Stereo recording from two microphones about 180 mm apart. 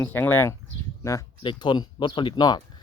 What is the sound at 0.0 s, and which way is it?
Speech, 10° left (ahead or behind).